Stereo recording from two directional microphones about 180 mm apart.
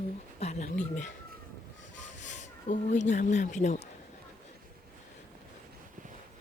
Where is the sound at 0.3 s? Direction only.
35° left (ahead or behind).